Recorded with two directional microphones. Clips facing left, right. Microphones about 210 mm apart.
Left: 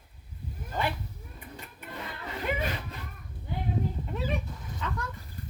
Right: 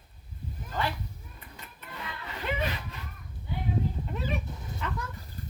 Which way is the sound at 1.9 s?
35° left (ahead or behind).